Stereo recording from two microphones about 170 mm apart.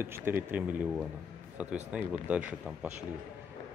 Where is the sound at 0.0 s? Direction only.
15° right (ahead or behind).